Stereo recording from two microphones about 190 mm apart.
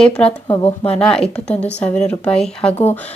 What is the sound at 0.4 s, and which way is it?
Speech, 25° left (ahead or behind).